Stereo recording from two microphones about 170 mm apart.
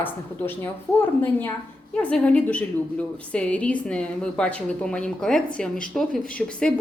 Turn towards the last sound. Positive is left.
turn(degrees=5)  # may be behind; listen again after turning